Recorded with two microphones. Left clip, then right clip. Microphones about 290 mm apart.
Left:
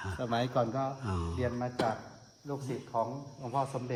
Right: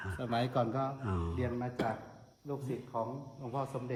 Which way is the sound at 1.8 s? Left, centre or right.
Left.